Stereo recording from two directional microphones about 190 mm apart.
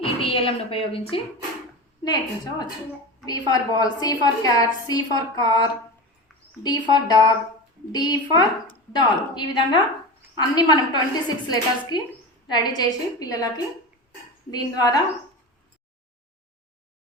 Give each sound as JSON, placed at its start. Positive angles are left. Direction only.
{"t": 0.0, "sound": "a woman's voice", "side_deg": 30}
{"t": 14.5, "sound": "a woman's voice", "side_deg": 20}